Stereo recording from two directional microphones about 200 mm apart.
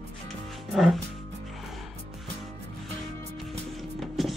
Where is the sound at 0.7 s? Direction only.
Centre (ahead or behind).